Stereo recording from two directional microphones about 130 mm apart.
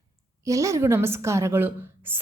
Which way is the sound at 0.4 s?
25° right (ahead or behind).